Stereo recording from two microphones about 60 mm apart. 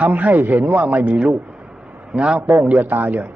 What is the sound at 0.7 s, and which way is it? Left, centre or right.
A man's voice, centre.